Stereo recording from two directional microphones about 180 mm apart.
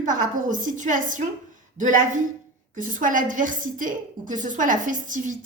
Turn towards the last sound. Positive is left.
turn(degrees=-45)  # may be behind; listen again after turning